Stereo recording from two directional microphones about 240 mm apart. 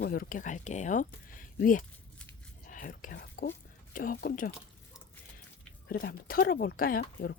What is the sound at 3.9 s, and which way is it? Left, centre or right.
Speech, left.